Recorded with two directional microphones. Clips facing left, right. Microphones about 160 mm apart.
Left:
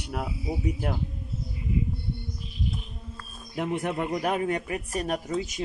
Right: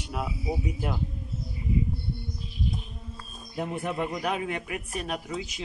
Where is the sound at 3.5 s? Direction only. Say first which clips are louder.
Left 3 dB; 80° left.